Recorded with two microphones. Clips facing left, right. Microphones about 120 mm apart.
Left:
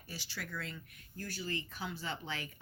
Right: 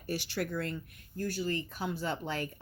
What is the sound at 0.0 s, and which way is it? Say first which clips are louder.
Speech: right 12 dB; 65° right (ahead or behind).